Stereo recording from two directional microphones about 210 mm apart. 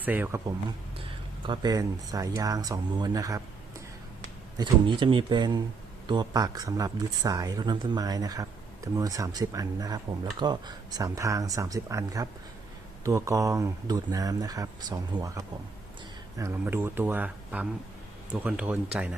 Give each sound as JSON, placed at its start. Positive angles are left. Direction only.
{"t": 0.0, "sound": "speech", "side_deg": -10}
{"t": 4.5, "sound": "speech", "side_deg": -20}